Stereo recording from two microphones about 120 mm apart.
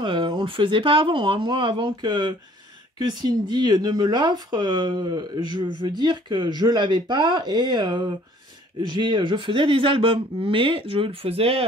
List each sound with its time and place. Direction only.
0.0 s speech: 45° right (ahead or behind)